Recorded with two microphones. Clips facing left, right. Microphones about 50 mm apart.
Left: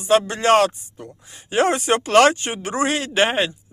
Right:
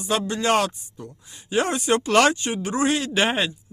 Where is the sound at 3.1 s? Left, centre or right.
Centre.